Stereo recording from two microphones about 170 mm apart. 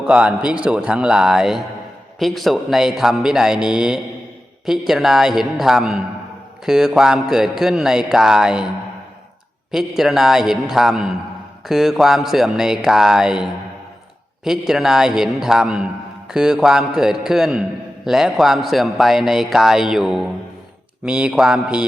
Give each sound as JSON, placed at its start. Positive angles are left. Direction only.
{"t": 0.0, "sound": "a man's voice", "side_deg": -5}
{"t": 9.7, "sound": "a man's voice", "side_deg": 0}